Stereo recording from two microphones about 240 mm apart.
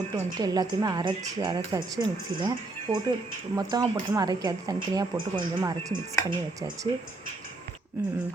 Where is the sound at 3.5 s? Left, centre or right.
Centre.